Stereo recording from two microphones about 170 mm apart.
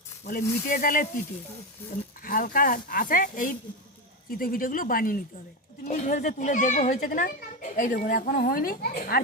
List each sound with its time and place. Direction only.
0.3 s a woman's voice: 55° left (ahead or behind)
2.2 s a woman's voice: 55° left (ahead or behind)